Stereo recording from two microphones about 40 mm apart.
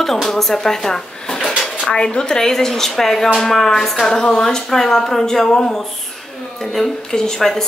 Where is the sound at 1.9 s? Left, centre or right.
Left.